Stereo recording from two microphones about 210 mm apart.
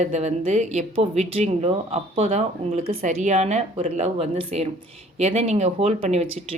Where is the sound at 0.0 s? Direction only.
30° right (ahead or behind).